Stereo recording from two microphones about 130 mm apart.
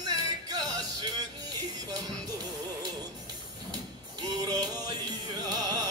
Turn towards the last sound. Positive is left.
turn(degrees=-30)  # may be behind; listen again after turning